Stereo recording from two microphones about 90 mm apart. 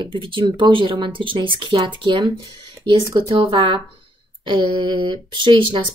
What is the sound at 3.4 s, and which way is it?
Speech, 70° right (ahead or behind).